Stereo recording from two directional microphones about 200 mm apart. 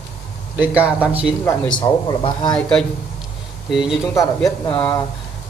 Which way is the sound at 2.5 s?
5° left (ahead or behind).